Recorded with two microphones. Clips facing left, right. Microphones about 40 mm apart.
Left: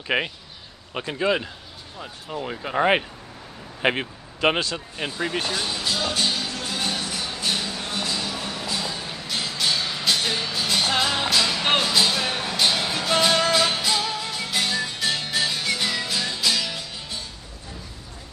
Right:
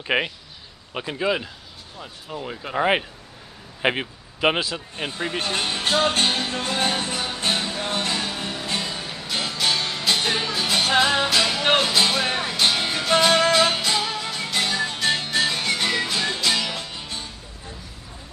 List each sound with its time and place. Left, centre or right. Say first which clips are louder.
0.0 s speech: right 1 dB; centre
5.5 s music: right 3 dB; right
9.0 s music: right 1 dB; centre
12.0 s music: right 2 dB; centre